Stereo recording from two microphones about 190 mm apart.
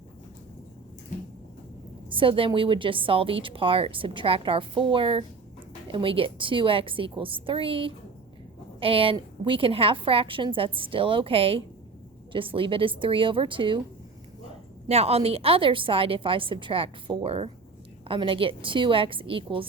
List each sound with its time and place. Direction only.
2.0 s a woman's voice: 25° right (ahead or behind)
14.8 s a woman's voice: 30° right (ahead or behind)